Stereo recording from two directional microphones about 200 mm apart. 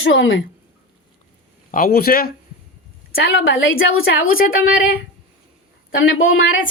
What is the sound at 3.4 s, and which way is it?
Speech, 80° left.